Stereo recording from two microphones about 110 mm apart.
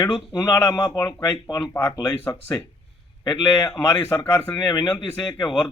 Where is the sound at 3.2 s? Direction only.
35° left (ahead or behind).